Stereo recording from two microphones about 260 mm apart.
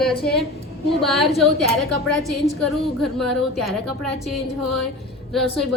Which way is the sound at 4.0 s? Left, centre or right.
Centre.